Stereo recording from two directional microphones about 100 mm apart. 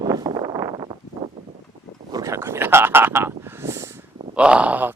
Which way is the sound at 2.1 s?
35° right (ahead or behind).